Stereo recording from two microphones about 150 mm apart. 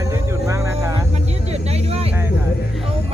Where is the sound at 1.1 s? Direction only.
45° right (ahead or behind).